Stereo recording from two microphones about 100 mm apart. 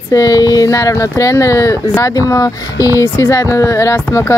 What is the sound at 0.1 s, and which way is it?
Speech, 35° left (ahead or behind).